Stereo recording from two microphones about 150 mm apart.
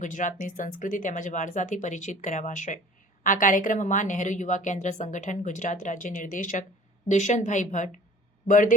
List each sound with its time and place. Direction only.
0.0 s a woman's voice: 60° left (ahead or behind)